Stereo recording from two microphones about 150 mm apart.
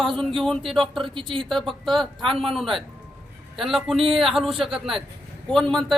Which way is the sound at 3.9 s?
40° right (ahead or behind).